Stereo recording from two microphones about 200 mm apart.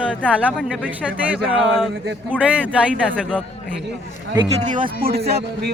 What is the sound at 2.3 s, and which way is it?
Speech, 5° left (ahead or behind).